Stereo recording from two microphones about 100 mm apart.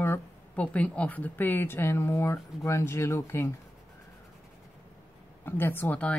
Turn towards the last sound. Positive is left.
turn(degrees=15)  # may be behind; listen again after turning